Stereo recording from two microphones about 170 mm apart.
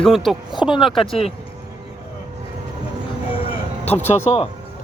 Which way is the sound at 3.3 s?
30° left (ahead or behind).